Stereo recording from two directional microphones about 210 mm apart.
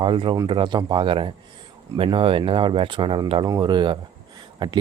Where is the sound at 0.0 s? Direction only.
25° right (ahead or behind).